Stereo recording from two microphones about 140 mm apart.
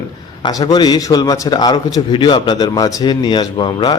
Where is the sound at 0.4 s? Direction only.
35° left (ahead or behind).